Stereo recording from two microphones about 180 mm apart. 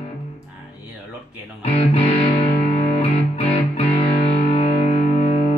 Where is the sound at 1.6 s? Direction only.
35° left (ahead or behind).